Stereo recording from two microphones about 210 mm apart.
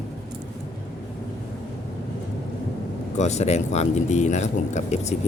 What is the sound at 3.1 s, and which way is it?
Speech, 35° left (ahead or behind).